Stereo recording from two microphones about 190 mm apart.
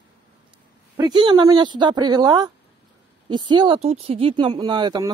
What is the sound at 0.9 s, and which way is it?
Speech, 25° right (ahead or behind).